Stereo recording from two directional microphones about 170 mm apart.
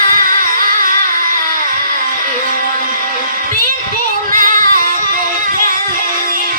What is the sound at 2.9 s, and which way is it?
Music, 55° right (ahead or behind).